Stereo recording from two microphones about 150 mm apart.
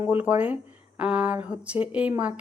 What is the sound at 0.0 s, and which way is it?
Speech, 15° right (ahead or behind).